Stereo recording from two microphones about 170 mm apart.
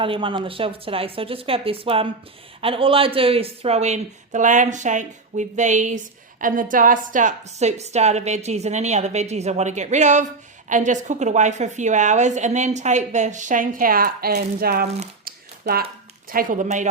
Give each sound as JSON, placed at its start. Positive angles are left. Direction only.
{"t": 0.0, "sound": "a woman's voice", "side_deg": -30}
{"t": 15.2, "sound": "a sound", "side_deg": -65}
{"t": 16.3, "sound": "a woman's voice", "side_deg": -55}